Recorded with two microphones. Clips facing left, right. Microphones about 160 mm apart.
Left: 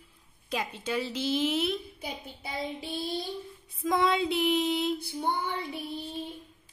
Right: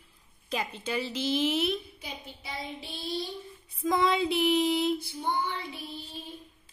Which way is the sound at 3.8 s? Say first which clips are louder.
Even; centre (ahead or behind).